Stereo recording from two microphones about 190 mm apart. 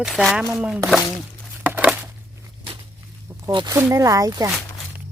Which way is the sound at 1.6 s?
5° right (ahead or behind).